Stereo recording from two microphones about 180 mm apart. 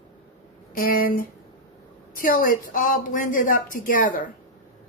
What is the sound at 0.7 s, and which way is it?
A woman's voice, 55° left (ahead or behind).